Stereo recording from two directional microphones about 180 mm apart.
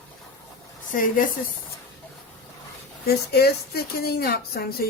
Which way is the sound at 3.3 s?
65° left (ahead or behind).